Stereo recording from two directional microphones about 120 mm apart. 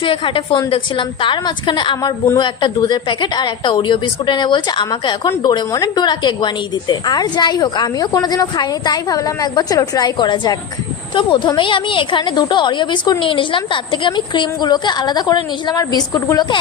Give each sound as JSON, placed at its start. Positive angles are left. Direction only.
{"t": 0.0, "sound": "a woman's voice", "side_deg": 45}